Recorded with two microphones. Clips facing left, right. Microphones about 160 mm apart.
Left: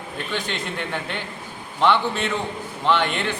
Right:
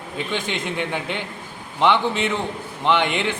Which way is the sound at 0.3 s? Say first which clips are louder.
Right 2 dB; 20° right (ahead or behind).